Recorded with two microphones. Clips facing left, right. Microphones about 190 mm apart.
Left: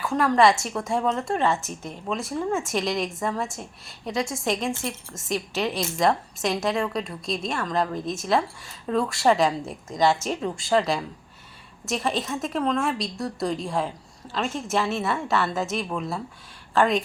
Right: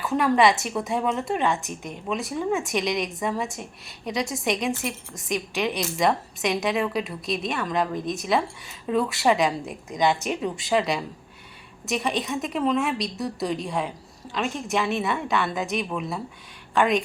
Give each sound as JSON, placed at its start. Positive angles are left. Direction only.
{"t": 0.0, "sound": "a woman's voice", "side_deg": -5}
{"t": 4.3, "sound": "a woman's voice", "side_deg": -20}
{"t": 4.5, "sound": "a woman's voice", "side_deg": 0}
{"t": 5.3, "sound": "a woman's voice", "side_deg": -15}
{"t": 6.0, "sound": "a woman's voice", "side_deg": 0}
{"t": 10.0, "sound": "a woman's voice", "side_deg": -20}
{"t": 10.7, "sound": "a woman's voice", "side_deg": 0}